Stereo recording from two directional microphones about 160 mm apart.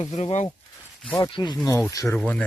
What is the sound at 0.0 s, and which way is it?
Speech, 40° left (ahead or behind).